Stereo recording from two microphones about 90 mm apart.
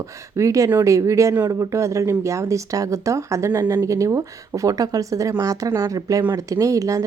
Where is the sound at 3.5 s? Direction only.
20° right (ahead or behind).